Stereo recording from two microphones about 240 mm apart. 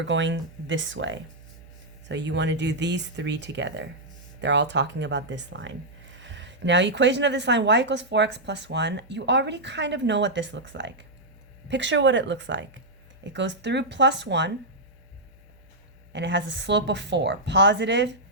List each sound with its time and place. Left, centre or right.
0.0 s a woman's voice: right
16.1 s a woman's voice: right